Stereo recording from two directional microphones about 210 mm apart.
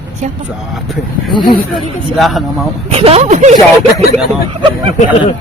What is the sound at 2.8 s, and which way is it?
Speech, 30° right (ahead or behind).